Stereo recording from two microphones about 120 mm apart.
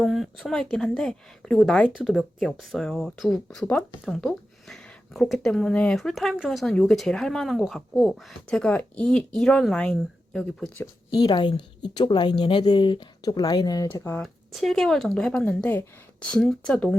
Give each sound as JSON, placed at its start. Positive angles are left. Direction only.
{"t": 0.0, "sound": "speech", "side_deg": 0}
{"t": 11.1, "sound": "a woman's voice", "side_deg": 40}
{"t": 13.9, "sound": "speech", "side_deg": 20}
{"t": 14.2, "sound": "speech", "side_deg": 0}